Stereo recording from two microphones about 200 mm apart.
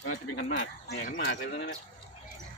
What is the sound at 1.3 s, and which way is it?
Speech, 45° left (ahead or behind).